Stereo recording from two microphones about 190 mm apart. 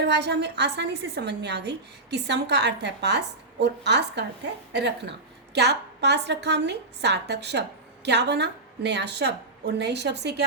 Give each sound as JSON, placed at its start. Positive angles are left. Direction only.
{"t": 0.0, "sound": "a woman's voice", "side_deg": -65}